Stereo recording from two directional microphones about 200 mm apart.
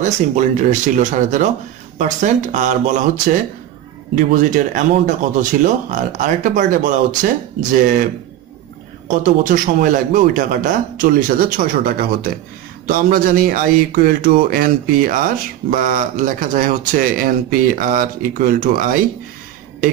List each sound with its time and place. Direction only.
0.0 s speech: 35° right (ahead or behind)
9.0 s speech: 40° right (ahead or behind)